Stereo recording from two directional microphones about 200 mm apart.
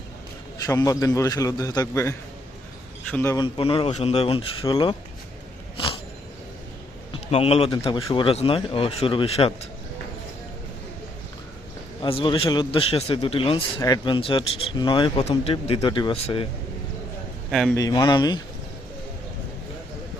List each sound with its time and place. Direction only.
0.6 s a man's voice: 15° left (ahead or behind)
7.1 s a man's voice: 30° left (ahead or behind)
12.0 s a man's voice: 25° left (ahead or behind)
17.5 s a man's voice: centre (ahead or behind)
17.7 s a man's voice: 20° left (ahead or behind)